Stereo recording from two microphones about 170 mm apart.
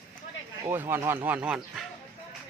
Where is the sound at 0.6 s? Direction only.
15° right (ahead or behind).